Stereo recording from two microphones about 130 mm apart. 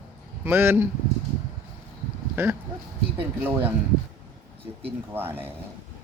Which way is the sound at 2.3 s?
20° right (ahead or behind).